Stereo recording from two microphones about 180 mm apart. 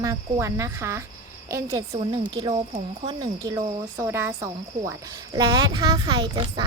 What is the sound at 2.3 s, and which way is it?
Speech, 30° right (ahead or behind).